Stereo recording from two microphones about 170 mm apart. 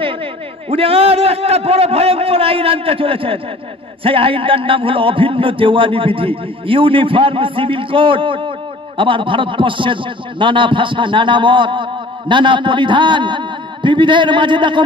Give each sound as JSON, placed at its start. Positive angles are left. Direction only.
{"t": 0.7, "sound": "a man's voice", "side_deg": -35}